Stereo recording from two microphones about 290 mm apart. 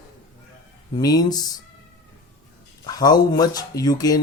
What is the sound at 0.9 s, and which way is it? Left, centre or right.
Speech, centre.